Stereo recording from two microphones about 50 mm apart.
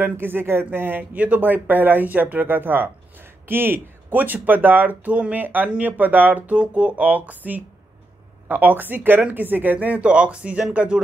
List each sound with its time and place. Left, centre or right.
0.0 s speech: right